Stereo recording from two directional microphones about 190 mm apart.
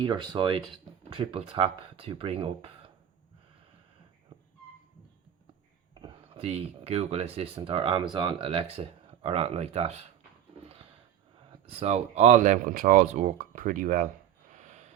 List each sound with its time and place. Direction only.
0.0 s speech: 25° right (ahead or behind)
4.3 s dog: 20° right (ahead or behind)
5.9 s speech: 25° right (ahead or behind)
11.6 s speech: 30° right (ahead or behind)
14.5 s snort: 40° right (ahead or behind)